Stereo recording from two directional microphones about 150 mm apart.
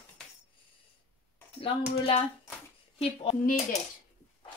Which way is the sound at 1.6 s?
35° left (ahead or behind).